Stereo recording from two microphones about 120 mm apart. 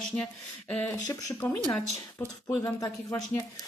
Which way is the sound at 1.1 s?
25° left (ahead or behind).